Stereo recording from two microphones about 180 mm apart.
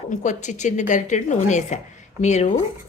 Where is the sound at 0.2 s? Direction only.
40° left (ahead or behind).